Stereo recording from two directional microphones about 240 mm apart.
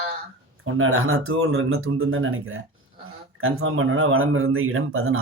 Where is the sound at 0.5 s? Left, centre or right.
Right.